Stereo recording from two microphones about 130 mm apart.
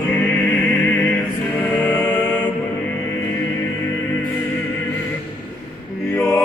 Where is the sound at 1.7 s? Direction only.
10° left (ahead or behind).